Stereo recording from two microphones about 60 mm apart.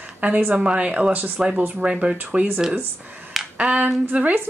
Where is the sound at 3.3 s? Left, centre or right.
Centre.